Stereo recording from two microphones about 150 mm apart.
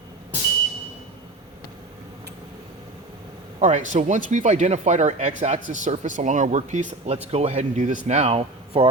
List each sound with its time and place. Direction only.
3.6 s speech: 55° right (ahead or behind)